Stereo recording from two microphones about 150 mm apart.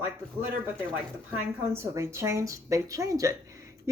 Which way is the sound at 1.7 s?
20° right (ahead or behind).